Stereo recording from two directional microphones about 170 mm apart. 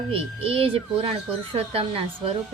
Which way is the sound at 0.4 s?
35° right (ahead or behind).